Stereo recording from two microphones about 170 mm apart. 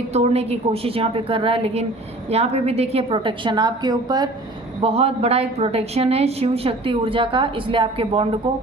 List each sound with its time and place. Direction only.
0.1 s a woman's voice: 40° right (ahead or behind); by 4.3 s 25° right (ahead or behind)
4.8 s a woman's voice: 35° right (ahead or behind)